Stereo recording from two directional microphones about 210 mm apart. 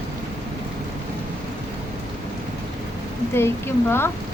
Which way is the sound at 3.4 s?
10° left (ahead or behind).